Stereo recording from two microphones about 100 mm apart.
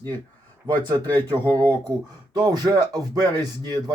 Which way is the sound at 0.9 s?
20° left (ahead or behind).